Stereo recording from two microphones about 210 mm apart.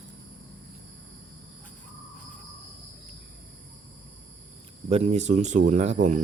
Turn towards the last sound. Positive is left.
turn(degrees=-35)  # may be behind; listen again after turning